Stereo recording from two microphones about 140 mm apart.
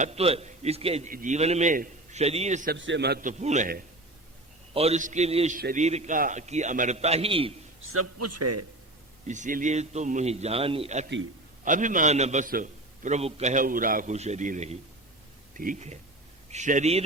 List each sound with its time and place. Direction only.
0.0 s a man's voice: 50° right (ahead or behind)
1.0 s a man's voice: 65° right (ahead or behind)
2.1 s a man's voice: 50° right (ahead or behind); by 3.8 s 75° right (ahead or behind)
4.7 s a man's voice: 45° right (ahead or behind)
4.9 s a man's voice: 60° right (ahead or behind)
5.5 s a man's voice: 90° right
5.8 s a man's voice: 55° right (ahead or behind)
9.2 s a man's voice: 60° right (ahead or behind)
11.6 s a man's voice: 65° right (ahead or behind)
14.1 s a man's voice: 55° right (ahead or behind)
15.5 s a man's voice: 70° right (ahead or behind)